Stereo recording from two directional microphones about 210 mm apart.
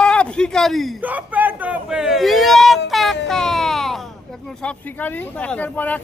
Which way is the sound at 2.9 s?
Centre (ahead or behind).